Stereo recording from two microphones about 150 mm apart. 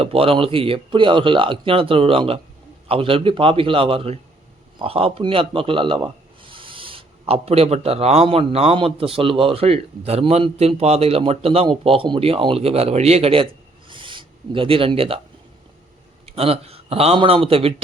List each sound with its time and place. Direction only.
0.0 s a man's voice: 40° right (ahead or behind)
16.2 s a man's voice: 40° right (ahead or behind)